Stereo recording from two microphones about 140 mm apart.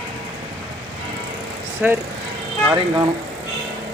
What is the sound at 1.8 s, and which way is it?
Speech, 10° right (ahead or behind).